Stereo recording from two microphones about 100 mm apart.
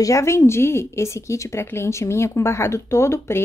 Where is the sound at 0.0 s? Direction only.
30° left (ahead or behind).